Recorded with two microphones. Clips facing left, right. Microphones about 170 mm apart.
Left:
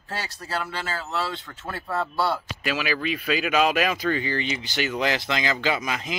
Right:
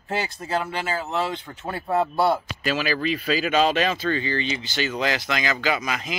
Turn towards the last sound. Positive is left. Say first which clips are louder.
# right 1 dB
turn(degrees=20)  # may be behind; listen again after turning